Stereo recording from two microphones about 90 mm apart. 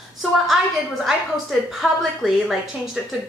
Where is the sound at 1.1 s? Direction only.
Centre (ahead or behind).